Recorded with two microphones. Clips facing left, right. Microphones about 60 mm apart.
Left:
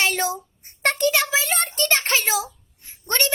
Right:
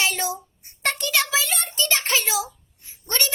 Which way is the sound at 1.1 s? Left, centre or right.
Left.